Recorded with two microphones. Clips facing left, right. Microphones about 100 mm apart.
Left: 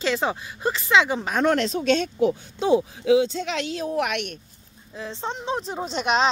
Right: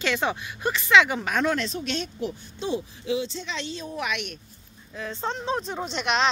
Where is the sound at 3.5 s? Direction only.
90° left.